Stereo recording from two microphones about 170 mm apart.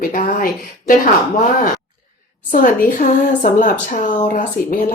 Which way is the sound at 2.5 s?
55° left (ahead or behind).